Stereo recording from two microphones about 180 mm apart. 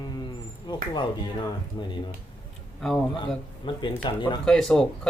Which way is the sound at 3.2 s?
25° left (ahead or behind).